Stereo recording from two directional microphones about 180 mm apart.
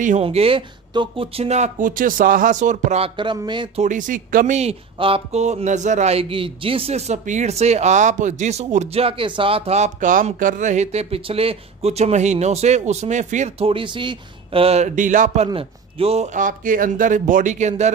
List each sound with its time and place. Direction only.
0.0 s speech: 40° right (ahead or behind)
3.2 s speech: 25° right (ahead or behind)
3.8 s speech: 45° right (ahead or behind)